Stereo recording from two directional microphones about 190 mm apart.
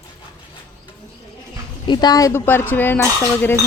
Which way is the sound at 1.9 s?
20° left (ahead or behind).